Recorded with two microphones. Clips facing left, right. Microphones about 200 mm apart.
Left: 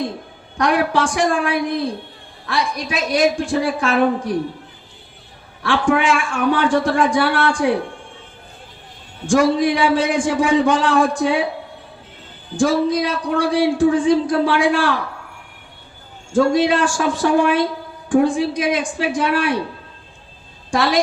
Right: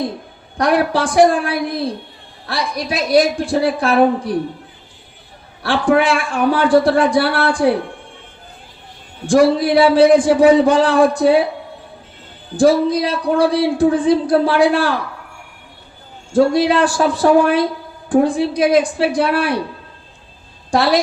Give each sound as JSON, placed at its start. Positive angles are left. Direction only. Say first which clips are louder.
{"t": 0.5, "sound": "a man's voice", "louder": "right 2 dB", "side_deg": -35}
{"t": 5.6, "sound": "a man's voice", "louder": "right 2 dB", "side_deg": -35}
{"t": 9.2, "sound": "a man's voice", "louder": "right 3 dB", "side_deg": -35}
{"t": 12.5, "sound": "a man's voice", "louder": "right 4 dB", "side_deg": -35}
{"t": 16.3, "sound": "a man's voice", "louder": "right 2 dB", "side_deg": -35}
{"t": 20.7, "sound": "a woman's voice", "louder": "right 3 dB", "side_deg": -35}